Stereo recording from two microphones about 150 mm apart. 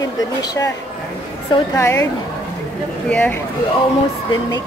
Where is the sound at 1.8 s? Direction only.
20° left (ahead or behind).